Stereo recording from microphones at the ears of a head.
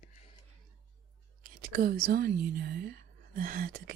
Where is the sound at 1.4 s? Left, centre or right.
Right.